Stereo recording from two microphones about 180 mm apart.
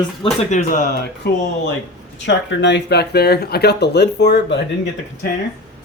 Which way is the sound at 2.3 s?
80° left.